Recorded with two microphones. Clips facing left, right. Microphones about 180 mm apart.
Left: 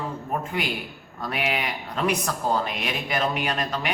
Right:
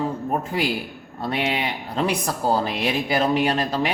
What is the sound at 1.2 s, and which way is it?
Speech, 30° right (ahead or behind).